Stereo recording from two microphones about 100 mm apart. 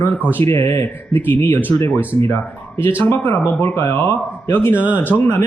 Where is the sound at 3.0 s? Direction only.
20° left (ahead or behind).